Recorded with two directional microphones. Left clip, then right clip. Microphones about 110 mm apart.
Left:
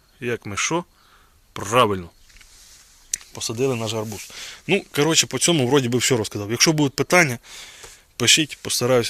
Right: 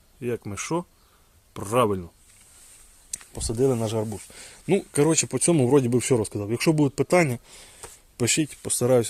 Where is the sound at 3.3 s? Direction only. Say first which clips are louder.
Left 1 dB; 50° right (ahead or behind).